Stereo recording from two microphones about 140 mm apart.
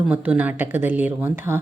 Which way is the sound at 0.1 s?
10° right (ahead or behind).